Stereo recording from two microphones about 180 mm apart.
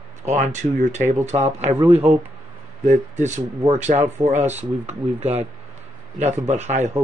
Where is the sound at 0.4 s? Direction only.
45° right (ahead or behind).